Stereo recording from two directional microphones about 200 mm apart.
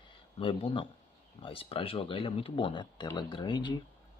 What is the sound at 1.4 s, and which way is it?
Speech, 25° left (ahead or behind).